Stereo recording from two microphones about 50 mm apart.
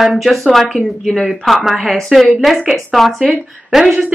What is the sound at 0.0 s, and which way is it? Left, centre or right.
Speech, centre.